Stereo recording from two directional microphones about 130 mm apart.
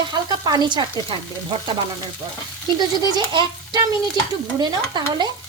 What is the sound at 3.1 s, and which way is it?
Speech, 35° right (ahead or behind).